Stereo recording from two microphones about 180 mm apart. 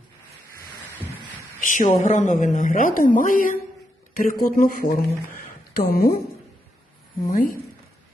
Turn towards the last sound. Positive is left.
turn(degrees=50)  # may be behind; listen again after turning